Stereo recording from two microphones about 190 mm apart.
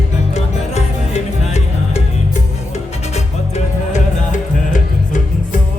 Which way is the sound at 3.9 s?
40° left (ahead or behind).